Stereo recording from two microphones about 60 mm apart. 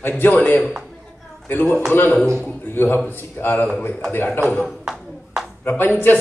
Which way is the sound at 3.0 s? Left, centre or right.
Left.